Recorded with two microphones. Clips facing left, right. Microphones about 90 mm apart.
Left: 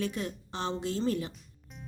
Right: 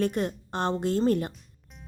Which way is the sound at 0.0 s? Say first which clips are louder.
Right 7 dB; 50° right (ahead or behind).